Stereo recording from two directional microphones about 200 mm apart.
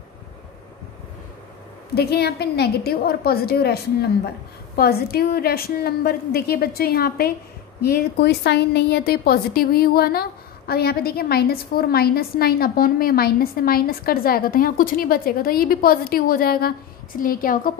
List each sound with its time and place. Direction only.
2.0 s a woman's voice: 55° left (ahead or behind)